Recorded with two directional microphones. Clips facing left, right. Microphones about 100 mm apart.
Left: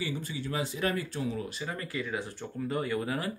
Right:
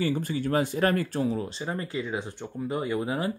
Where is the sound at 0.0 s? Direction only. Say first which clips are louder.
Right 8 dB; 50° right (ahead or behind).